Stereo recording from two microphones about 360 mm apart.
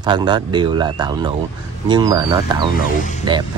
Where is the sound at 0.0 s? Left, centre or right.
Centre.